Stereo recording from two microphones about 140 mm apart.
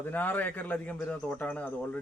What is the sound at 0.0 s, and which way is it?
Speech, 10° left (ahead or behind).